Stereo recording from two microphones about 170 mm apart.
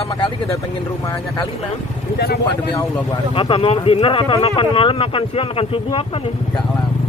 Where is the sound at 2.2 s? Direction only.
70° left (ahead or behind).